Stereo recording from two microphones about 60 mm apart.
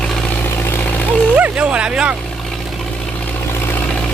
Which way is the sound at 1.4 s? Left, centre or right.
Right.